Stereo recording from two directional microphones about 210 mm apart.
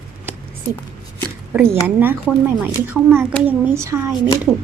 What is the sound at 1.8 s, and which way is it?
A child's voice, 10° right (ahead or behind).